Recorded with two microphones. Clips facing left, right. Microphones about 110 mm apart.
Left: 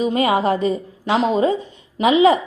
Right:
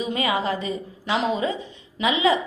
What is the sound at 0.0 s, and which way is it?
A woman's voice, 45° left (ahead or behind).